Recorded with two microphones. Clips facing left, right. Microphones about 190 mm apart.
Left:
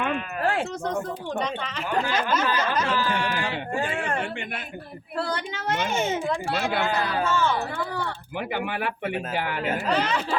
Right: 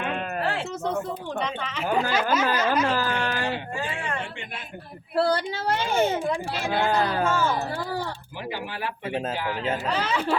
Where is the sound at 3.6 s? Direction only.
55° left (ahead or behind).